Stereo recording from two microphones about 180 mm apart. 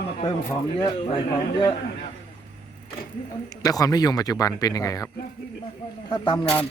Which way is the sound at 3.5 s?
20° left (ahead or behind).